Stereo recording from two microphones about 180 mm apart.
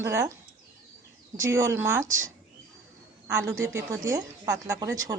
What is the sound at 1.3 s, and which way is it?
A woman's voice, 15° right (ahead or behind).